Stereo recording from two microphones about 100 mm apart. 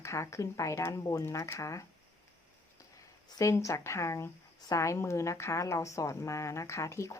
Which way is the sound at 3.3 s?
30° left (ahead or behind).